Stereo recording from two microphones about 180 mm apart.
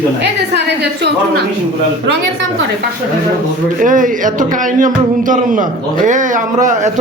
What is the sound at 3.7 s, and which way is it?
Speech, 50° right (ahead or behind).